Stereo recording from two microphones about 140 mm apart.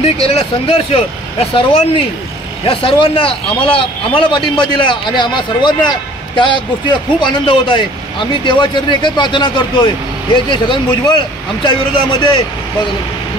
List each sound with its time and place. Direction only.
0.3 s speech: 45° left (ahead or behind)